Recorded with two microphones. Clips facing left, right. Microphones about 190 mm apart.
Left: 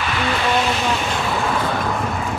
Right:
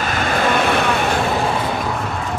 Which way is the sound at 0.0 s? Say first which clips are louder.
Right 2 dB; 45° right (ahead or behind).